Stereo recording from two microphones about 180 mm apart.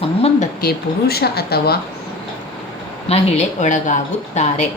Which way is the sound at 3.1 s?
40° left (ahead or behind).